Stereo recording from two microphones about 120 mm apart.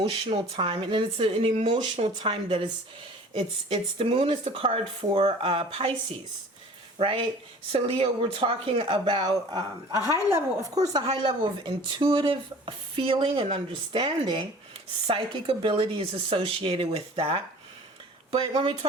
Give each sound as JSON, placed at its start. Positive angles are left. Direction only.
{"t": 0.0, "sound": "speech", "side_deg": -50}
{"t": 1.6, "sound": "speech", "side_deg": -80}
{"t": 2.2, "sound": "speech", "side_deg": -50}
{"t": 7.0, "sound": "speech", "side_deg": -45}
{"t": 10.1, "sound": "a woman's voice", "side_deg": -20}
{"t": 11.2, "sound": "speech", "side_deg": -45}
{"t": 15.0, "sound": "speech", "side_deg": -50}
{"t": 18.5, "sound": "speech", "side_deg": -45}